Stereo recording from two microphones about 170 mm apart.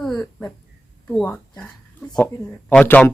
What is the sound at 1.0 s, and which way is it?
Speech, 5° left (ahead or behind).